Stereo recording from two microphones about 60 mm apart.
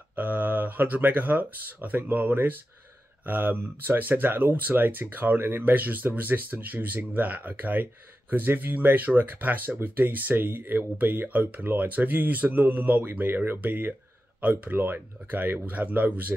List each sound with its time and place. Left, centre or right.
0.1 s speech: right